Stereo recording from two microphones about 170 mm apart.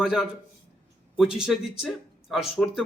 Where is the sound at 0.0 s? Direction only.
5° right (ahead or behind).